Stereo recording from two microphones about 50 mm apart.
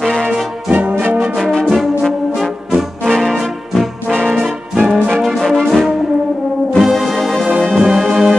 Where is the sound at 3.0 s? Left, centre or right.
Centre.